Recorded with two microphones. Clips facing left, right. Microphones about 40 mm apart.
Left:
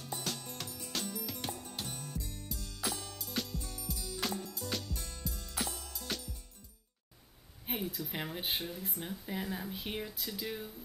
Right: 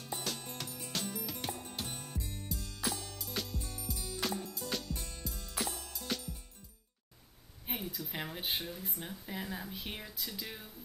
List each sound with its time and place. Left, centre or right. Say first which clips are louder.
0.3 s music: even; centre
1.9 s music: even; right
2.4 s music: right 2 dB; centre
7.6 s speech: left 3 dB; centre